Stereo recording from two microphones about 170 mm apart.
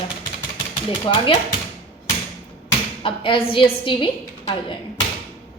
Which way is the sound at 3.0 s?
30° left (ahead or behind).